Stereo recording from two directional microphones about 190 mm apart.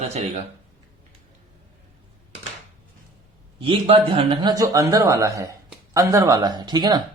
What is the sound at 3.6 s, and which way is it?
A man's voice, 30° right (ahead or behind).